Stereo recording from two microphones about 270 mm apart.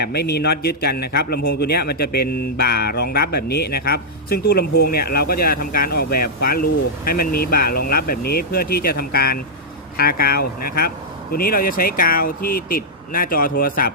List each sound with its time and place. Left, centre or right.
0.0 s speech: left